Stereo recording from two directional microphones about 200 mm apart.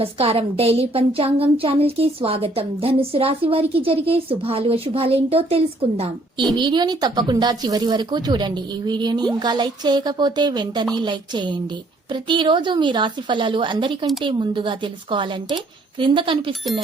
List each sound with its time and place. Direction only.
0.0 s a woman's voice: 30° right (ahead or behind)